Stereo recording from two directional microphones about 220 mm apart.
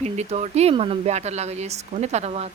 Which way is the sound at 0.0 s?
30° right (ahead or behind).